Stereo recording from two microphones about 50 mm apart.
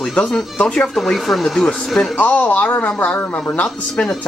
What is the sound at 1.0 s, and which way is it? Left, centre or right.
Speech, centre.